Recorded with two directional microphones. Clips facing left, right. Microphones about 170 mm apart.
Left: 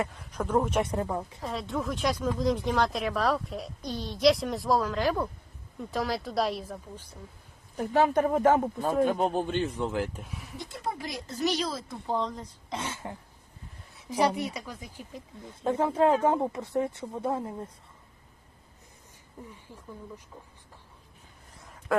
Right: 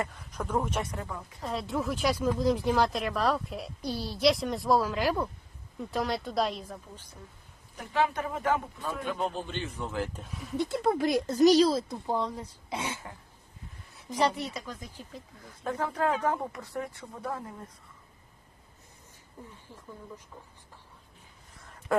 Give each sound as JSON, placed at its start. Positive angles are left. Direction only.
{"t": 0.0, "sound": "speech", "side_deg": 10}
{"t": 0.9, "sound": "speech", "side_deg": 35}
{"t": 1.4, "sound": "speech", "side_deg": 0}
{"t": 7.8, "sound": "a man's voice", "side_deg": 45}
{"t": 9.8, "sound": "speech", "side_deg": 15}
{"t": 10.6, "sound": "speech", "side_deg": -65}
{"t": 12.0, "sound": "speech", "side_deg": -10}
{"t": 13.9, "sound": "speech", "side_deg": 10}
{"t": 15.4, "sound": "speech", "side_deg": 25}